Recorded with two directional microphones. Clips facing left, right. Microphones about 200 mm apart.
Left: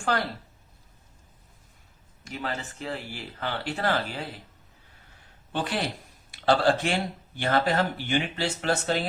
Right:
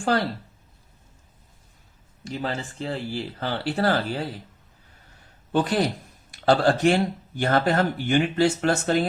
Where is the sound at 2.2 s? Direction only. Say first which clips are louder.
Right 4 dB; 30° right (ahead or behind).